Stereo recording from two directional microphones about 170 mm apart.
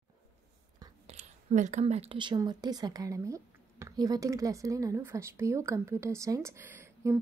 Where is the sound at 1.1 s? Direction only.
45° right (ahead or behind).